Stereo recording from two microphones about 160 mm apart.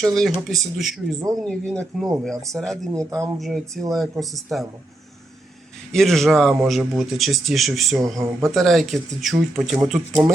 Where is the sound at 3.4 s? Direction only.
Centre (ahead or behind).